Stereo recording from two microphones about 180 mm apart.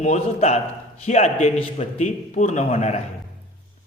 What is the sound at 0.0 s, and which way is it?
A man's voice, 35° left (ahead or behind).